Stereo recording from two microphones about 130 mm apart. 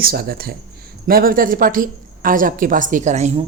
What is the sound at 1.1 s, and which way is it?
A woman's voice, 90° right.